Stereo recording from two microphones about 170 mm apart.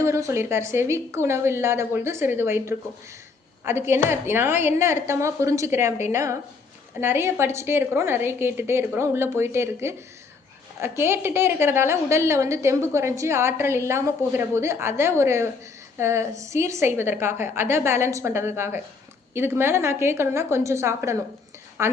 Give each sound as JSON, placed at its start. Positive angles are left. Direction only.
{"t": 0.0, "sound": "a woman's voice", "side_deg": -15}